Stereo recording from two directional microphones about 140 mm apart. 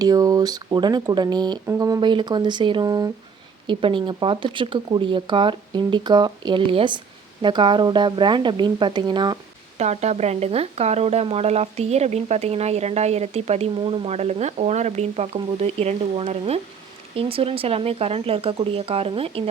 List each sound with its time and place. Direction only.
0.0 s speech: 25° right (ahead or behind)
3.7 s speech: 35° right (ahead or behind)
9.7 s speech: 55° right (ahead or behind)